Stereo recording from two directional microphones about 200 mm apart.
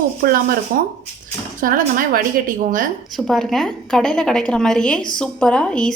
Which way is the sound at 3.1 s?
Centre (ahead or behind).